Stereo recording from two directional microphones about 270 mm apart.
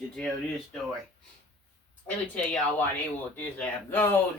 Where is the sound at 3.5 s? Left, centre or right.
Centre.